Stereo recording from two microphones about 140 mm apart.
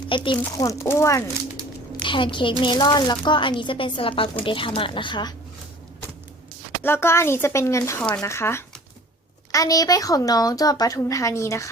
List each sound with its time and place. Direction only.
0.1 s a woman's voice: 35° left (ahead or behind); by 1.2 s 20° left (ahead or behind)
2.0 s speech: 35° left (ahead or behind)
6.8 s a woman's voice: 15° left (ahead or behind)